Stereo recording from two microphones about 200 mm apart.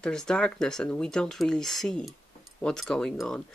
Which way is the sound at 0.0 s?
5° left (ahead or behind).